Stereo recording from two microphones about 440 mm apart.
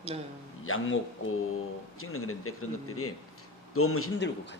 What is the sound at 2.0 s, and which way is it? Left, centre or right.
Speech, left.